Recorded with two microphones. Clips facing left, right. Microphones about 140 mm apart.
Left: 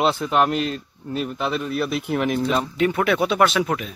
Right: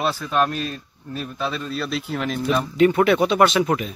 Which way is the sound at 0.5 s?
75° left (ahead or behind).